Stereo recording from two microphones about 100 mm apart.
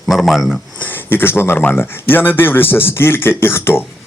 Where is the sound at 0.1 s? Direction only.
Centre (ahead or behind).